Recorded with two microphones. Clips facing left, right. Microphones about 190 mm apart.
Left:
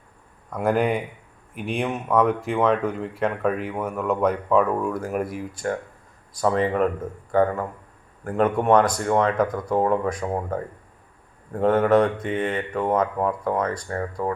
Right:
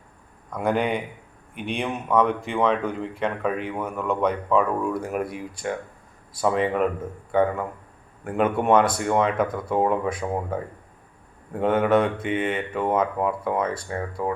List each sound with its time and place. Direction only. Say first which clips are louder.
0.5 s speech: left 2 dB; 5° left (ahead or behind)
8.2 s speech: left 1 dB; 5° right (ahead or behind)
11.6 s speech: left 2 dB; centre (ahead or behind)